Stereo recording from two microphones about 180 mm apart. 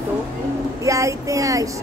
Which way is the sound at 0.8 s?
15° right (ahead or behind).